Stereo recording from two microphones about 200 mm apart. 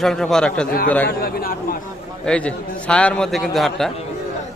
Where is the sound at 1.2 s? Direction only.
50° left (ahead or behind).